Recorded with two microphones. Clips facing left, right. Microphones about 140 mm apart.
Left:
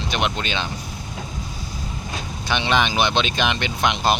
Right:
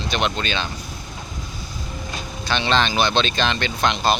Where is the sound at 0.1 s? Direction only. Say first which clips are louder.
Right 1 dB; 15° left (ahead or behind).